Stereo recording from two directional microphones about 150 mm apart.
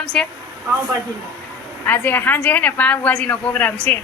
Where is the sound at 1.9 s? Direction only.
15° left (ahead or behind).